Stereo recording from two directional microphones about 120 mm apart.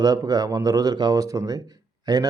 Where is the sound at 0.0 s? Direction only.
30° right (ahead or behind).